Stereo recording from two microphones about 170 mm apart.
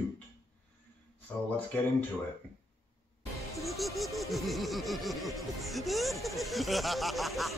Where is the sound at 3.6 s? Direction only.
Centre (ahead or behind).